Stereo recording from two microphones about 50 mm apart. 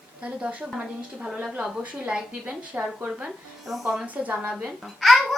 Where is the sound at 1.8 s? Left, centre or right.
Right.